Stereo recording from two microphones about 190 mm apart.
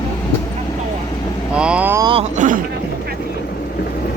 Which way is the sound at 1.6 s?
5° right (ahead or behind).